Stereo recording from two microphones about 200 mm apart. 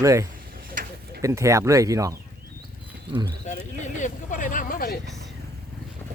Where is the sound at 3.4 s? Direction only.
40° left (ahead or behind).